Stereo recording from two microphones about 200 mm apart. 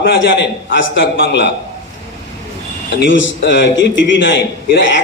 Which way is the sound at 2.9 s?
70° left (ahead or behind).